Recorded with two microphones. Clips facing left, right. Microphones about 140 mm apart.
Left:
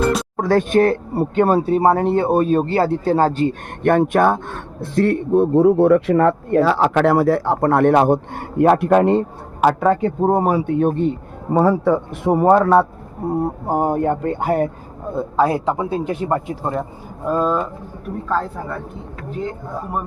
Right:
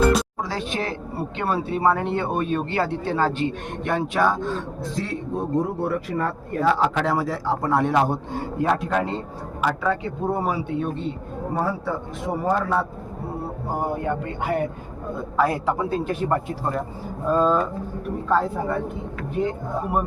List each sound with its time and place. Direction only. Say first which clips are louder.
0.3 s speech: left 12 dB; 55° left (ahead or behind)
3.8 s a man's voice: left 8 dB; 55° left (ahead or behind)
9.6 s speech: left 8 dB; 50° left (ahead or behind)
11.5 s a man's voice: left 11 dB; 65° left (ahead or behind); by 14.7 s 40° left (ahead or behind)
15.4 s a man's voice: left 4 dB; 20° left (ahead or behind)